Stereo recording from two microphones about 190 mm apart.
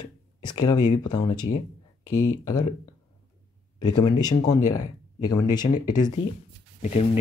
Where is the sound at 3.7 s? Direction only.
20° left (ahead or behind).